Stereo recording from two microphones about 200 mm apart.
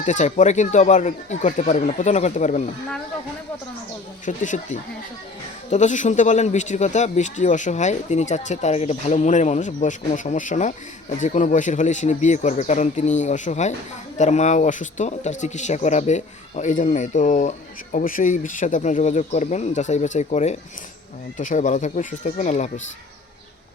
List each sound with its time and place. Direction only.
0.0 s speech: 35° left (ahead or behind)
4.3 s speech: 40° left (ahead or behind)